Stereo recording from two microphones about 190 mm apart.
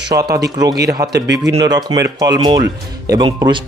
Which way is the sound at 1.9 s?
20° right (ahead or behind).